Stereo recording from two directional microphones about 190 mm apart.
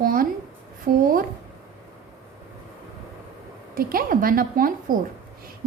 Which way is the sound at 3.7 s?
50° right (ahead or behind).